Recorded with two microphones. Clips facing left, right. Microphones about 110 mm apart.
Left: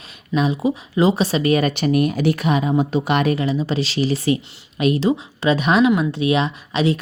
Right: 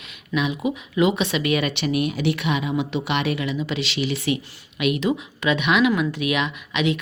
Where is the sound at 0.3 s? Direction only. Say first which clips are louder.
Left 4 dB; 35° left (ahead or behind).